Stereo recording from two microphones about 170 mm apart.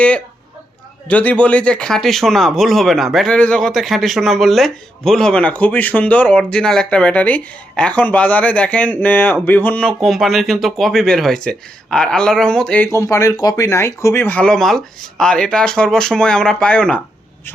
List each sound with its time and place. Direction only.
1.0 s speech: 10° left (ahead or behind)